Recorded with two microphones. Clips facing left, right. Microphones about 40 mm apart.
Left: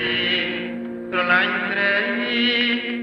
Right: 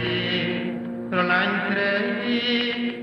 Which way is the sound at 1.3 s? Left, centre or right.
Left.